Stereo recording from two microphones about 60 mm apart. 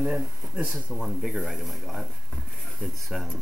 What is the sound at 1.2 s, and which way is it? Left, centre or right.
Speech, centre.